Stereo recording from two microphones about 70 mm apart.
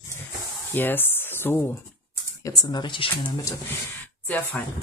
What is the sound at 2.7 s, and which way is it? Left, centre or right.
Speech, left.